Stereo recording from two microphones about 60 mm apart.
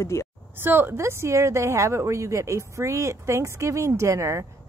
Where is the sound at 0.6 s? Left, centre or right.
Right.